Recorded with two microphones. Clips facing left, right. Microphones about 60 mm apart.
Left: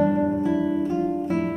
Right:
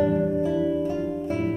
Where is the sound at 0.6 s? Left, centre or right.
Left.